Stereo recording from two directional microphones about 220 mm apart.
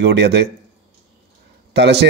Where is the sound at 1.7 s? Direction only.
50° right (ahead or behind).